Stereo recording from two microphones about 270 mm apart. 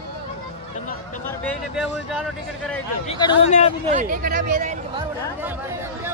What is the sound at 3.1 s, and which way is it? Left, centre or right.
Speech, centre.